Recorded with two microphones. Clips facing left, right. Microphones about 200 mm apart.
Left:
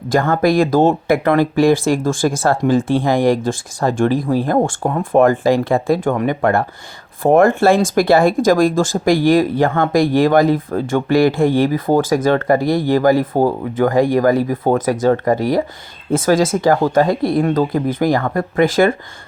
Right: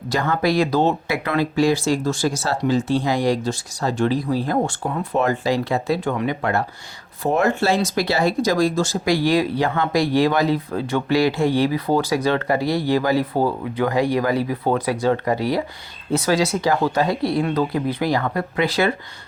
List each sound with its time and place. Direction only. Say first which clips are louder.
0.1 s speech: left 6 dB; 50° left (ahead or behind)